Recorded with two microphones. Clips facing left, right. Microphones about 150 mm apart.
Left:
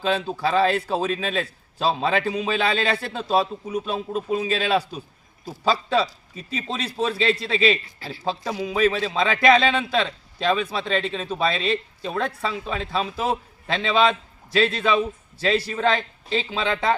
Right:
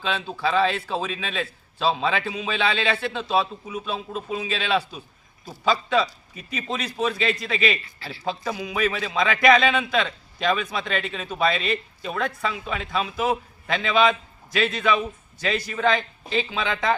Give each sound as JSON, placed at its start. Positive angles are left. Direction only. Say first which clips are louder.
{"t": 0.0, "sound": "a man's voice", "louder": "left 3 dB", "side_deg": 40}